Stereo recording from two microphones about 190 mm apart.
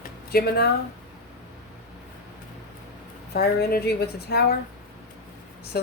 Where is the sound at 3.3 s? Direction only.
55° left (ahead or behind).